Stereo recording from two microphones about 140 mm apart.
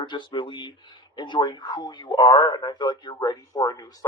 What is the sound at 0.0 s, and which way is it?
Speech, 35° left (ahead or behind).